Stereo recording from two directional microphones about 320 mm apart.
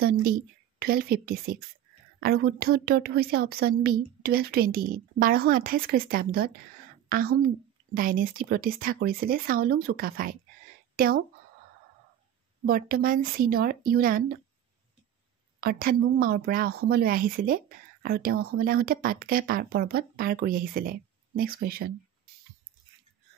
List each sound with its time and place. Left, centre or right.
0.2 s a woman's voice: right
12.6 s a woman's voice: right
15.6 s a woman's voice: right